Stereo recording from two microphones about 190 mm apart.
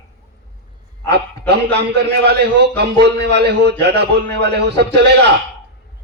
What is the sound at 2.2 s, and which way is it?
A man's voice, 65° right (ahead or behind).